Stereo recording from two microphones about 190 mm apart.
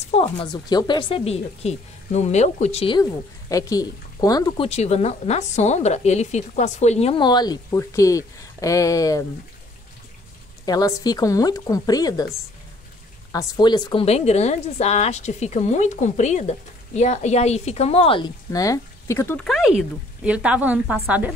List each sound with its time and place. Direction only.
0.1 s a woman's voice: 25° left (ahead or behind)
3.0 s a woman's voice: 20° left (ahead or behind)
4.6 s a woman's voice: 35° left (ahead or behind); by 9.2 s 15° left (ahead or behind)
10.6 s a woman's voice: 20° left (ahead or behind)
13.3 s a woman's voice: 20° left (ahead or behind); by 21.3 s 5° right (ahead or behind)